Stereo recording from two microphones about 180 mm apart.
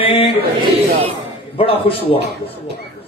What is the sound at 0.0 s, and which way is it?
Speech, 30° left (ahead or behind).